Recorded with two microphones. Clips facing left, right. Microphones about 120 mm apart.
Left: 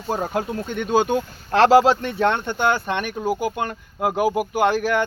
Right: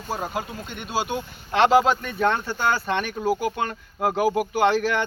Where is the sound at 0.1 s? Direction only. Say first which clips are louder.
Left 5 dB; 50° left (ahead or behind); by 2.3 s 30° left (ahead or behind).